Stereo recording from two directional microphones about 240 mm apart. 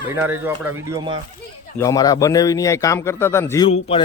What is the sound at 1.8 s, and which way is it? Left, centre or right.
A man's voice, centre.